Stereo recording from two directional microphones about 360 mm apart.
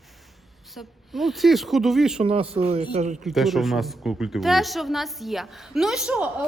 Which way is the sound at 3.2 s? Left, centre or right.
Centre.